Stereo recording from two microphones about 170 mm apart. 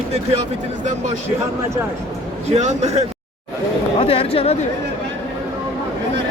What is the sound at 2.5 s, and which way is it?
Speech, 40° right (ahead or behind).